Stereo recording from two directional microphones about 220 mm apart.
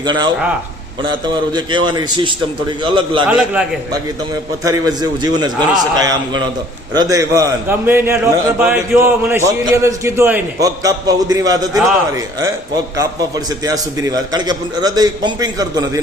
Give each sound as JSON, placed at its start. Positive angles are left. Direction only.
{"t": 0.0, "sound": "a man's voice", "side_deg": -20}
{"t": 1.5, "sound": "a man's voice", "side_deg": -20}
{"t": 3.2, "sound": "a man's voice", "side_deg": -5}
{"t": 4.6, "sound": "a man's voice", "side_deg": -15}